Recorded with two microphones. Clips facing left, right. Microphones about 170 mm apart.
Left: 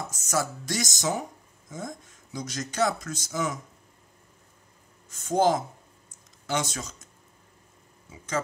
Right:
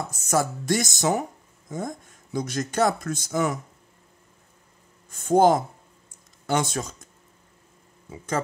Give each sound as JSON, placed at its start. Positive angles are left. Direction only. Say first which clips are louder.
{"t": 0.1, "sound": "speech", "louder": "right 5 dB", "side_deg": -55}
{"t": 5.1, "sound": "speech", "louder": "right 5 dB", "side_deg": -55}